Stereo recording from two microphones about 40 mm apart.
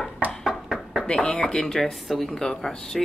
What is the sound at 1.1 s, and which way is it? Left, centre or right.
Speech, centre.